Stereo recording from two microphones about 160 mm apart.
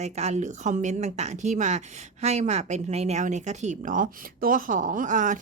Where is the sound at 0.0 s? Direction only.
45° right (ahead or behind).